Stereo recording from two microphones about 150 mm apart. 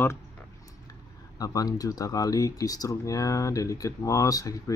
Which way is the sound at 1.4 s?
25° left (ahead or behind).